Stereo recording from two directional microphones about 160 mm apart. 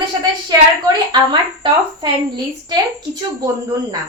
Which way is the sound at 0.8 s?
25° right (ahead or behind).